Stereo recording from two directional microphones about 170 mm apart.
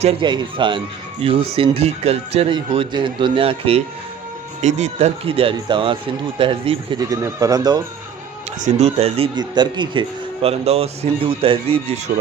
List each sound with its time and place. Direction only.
0.2 s speech: 25° right (ahead or behind)
7.2 s speech: 20° right (ahead or behind)
8.6 s speech: 40° right (ahead or behind)